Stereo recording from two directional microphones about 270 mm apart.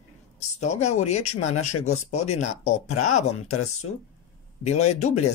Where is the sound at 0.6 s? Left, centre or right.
Left.